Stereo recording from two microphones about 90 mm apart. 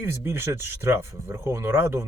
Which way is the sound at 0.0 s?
25° right (ahead or behind).